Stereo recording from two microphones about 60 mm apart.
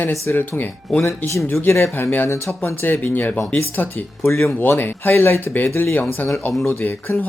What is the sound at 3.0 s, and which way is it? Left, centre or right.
Speech, left.